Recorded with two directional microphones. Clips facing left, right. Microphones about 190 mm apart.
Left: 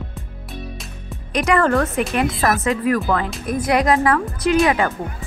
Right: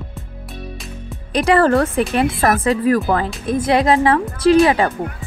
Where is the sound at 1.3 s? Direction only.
30° right (ahead or behind).